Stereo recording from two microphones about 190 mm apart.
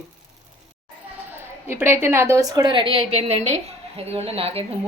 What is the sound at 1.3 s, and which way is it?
A woman's voice, 10° right (ahead or behind).